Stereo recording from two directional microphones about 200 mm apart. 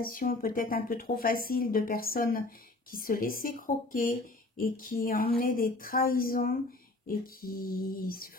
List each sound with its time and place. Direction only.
0.0 s speech: 45° left (ahead or behind)